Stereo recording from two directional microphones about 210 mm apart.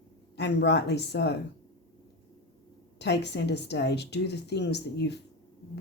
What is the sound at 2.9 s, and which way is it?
Speech, 55° left (ahead or behind).